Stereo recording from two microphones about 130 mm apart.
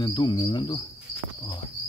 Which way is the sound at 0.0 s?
30° left (ahead or behind).